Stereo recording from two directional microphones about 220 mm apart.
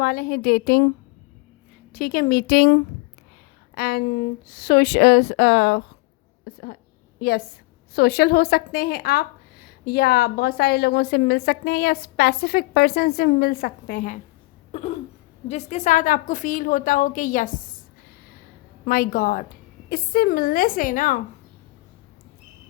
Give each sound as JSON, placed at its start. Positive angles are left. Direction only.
{"t": 0.0, "sound": "a woman's voice", "side_deg": 45}
{"t": 1.9, "sound": "a woman's voice", "side_deg": 40}
{"t": 3.8, "sound": "a woman's voice", "side_deg": 45}
{"t": 6.4, "sound": "a sound", "side_deg": 45}
{"t": 7.2, "sound": "a woman's voice", "side_deg": 45}
{"t": 14.7, "sound": "a sound", "side_deg": 30}
{"t": 15.4, "sound": "a woman's voice", "side_deg": 30}
{"t": 18.9, "sound": "a woman's voice", "side_deg": 40}